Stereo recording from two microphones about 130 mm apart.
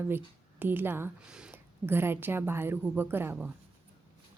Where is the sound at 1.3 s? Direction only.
5° right (ahead or behind).